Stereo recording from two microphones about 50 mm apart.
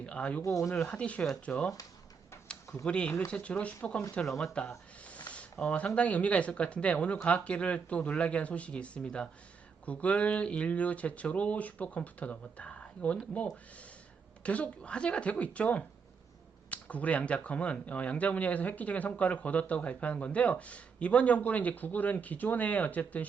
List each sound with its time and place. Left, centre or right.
0.0 s speech: left
2.5 s a sound: centre
2.8 s speech: left
4.3 s speech: centre
5.0 s speech: left
9.8 s speech: left